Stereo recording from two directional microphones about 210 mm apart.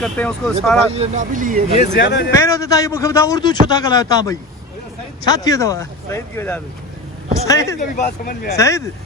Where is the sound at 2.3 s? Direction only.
15° left (ahead or behind).